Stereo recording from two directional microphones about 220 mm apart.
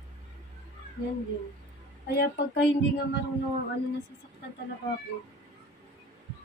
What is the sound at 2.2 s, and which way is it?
Speech, 50° left (ahead or behind).